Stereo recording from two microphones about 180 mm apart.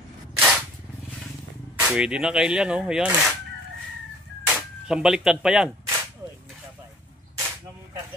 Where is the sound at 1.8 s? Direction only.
5° right (ahead or behind).